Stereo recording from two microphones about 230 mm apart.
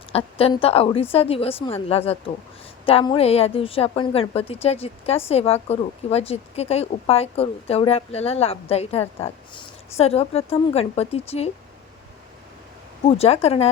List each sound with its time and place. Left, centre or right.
0.1 s speech: left
13.1 s speech: left